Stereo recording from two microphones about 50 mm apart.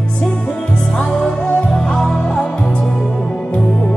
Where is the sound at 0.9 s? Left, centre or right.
Centre.